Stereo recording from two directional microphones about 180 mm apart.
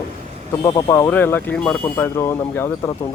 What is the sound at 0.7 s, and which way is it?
Speech, 25° left (ahead or behind).